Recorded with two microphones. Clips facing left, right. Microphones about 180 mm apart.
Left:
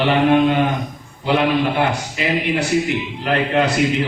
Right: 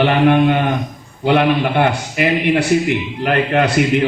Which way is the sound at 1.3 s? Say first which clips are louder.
Right 3 dB; 60° right (ahead or behind).